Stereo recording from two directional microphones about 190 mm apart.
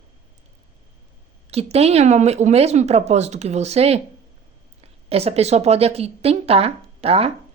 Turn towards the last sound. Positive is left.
turn(degrees=-30)  # may be behind; listen again after turning